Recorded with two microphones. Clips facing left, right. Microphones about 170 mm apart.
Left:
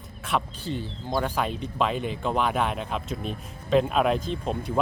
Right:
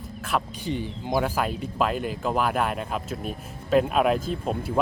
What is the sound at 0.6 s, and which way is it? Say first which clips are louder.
Speech: right 3 dB; 15° right (ahead or behind).